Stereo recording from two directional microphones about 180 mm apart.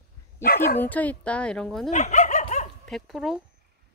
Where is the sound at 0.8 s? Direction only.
10° left (ahead or behind).